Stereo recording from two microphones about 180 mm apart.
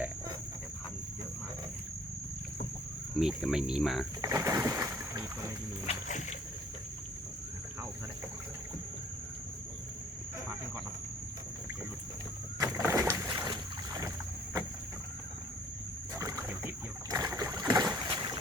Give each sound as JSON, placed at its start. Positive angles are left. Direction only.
{"t": 3.2, "sound": "speech", "side_deg": 0}
{"t": 4.2, "sound": "boat", "side_deg": -20}
{"t": 5.8, "sound": "a sound", "side_deg": 40}
{"t": 12.6, "sound": "boat", "side_deg": -15}
{"t": 16.1, "sound": "rowboat", "side_deg": -20}
{"t": 17.7, "sound": "boat", "side_deg": -15}